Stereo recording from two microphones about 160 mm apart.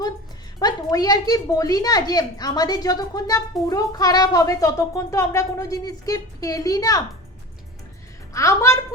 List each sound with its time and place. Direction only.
0.6 s a woman's voice: 25° left (ahead or behind)
8.3 s a woman's voice: 20° left (ahead or behind)